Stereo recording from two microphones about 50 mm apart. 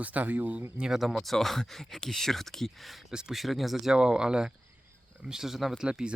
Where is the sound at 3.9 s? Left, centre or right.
Centre.